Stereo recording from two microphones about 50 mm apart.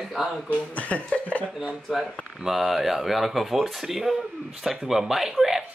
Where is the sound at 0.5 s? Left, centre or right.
Left.